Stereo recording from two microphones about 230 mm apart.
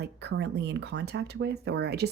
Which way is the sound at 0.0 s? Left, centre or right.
Right.